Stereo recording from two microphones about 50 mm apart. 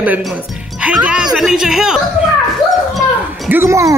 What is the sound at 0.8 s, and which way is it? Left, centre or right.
A woman's voice, right.